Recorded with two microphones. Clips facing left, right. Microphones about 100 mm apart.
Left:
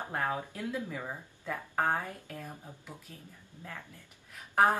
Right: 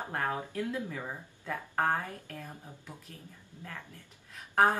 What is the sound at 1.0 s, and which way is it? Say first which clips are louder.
A woman's voice: even; 5° left (ahead or behind).